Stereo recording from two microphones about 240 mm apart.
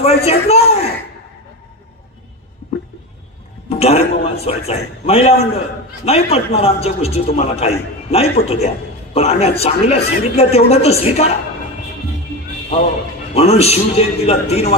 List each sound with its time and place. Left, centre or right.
0.0 s speech: left
3.6 s a man's voice: left
13.3 s a man's voice: left